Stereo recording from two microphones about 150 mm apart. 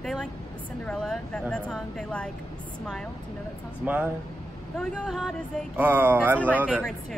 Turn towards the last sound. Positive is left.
turn(degrees=-10)  # may be behind; listen again after turning